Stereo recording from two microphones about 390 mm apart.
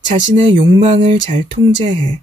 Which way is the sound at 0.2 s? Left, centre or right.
Centre.